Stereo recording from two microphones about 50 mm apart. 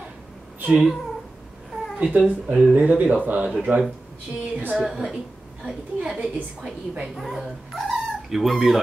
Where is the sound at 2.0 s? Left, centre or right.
Right.